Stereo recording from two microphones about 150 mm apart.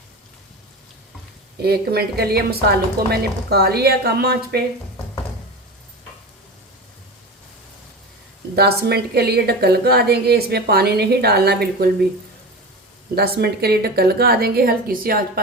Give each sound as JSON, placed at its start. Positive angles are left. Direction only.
{"t": 1.6, "sound": "a woman's voice", "side_deg": -90}
{"t": 8.5, "sound": "a woman's voice", "side_deg": -90}
{"t": 13.1, "sound": "a woman's voice", "side_deg": -90}